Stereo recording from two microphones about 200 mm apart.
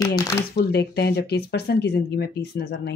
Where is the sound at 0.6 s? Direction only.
55° left (ahead or behind).